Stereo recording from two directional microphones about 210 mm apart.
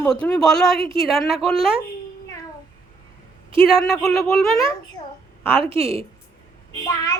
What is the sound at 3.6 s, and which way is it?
Speech, centre (ahead or behind).